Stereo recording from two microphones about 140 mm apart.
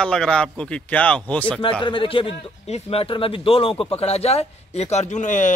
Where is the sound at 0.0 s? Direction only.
5° left (ahead or behind).